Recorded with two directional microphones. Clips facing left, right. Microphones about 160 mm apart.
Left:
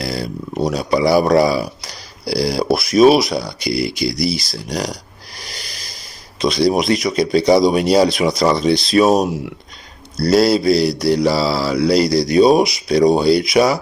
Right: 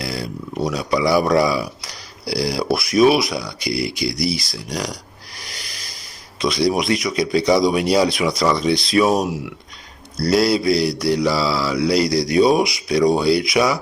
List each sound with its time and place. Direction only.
0.0 s a man's voice: 35° left (ahead or behind)
6.4 s a man's voice: 30° left (ahead or behind)
10.2 s mantra: 30° left (ahead or behind)
12.1 s a man's voice: 25° left (ahead or behind)